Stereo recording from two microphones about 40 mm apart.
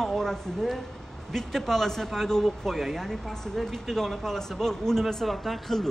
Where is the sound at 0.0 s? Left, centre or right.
Centre.